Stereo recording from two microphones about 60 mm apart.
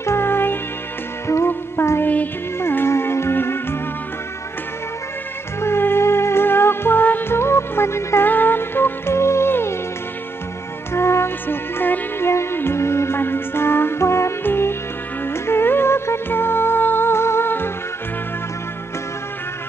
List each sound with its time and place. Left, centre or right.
0.0 s music: left
1.2 s music: left
5.6 s music: left
8.3 s music: left
10.9 s music: left
11.4 s music: left